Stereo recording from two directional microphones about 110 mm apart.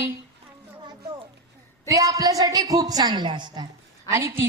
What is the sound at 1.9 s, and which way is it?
A woman's voice, 30° right (ahead or behind).